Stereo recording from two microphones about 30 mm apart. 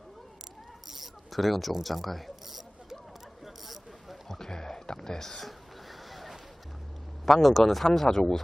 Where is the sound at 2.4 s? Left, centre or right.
Centre.